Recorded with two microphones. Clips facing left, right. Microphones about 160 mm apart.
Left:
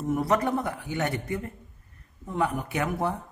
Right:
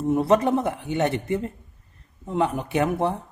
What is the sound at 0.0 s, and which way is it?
Speech, 25° right (ahead or behind).